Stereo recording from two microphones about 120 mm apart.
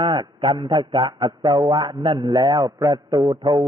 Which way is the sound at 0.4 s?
40° right (ahead or behind).